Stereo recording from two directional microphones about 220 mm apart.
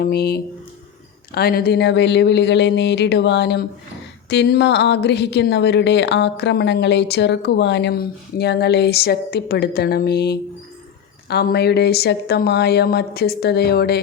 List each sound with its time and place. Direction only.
0.0 s a woman's voice: 45° left (ahead or behind)